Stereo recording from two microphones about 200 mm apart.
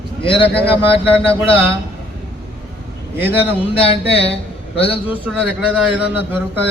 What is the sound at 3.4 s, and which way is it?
Speech, 30° left (ahead or behind).